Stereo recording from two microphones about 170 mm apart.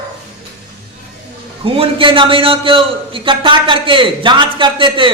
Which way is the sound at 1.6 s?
30° right (ahead or behind).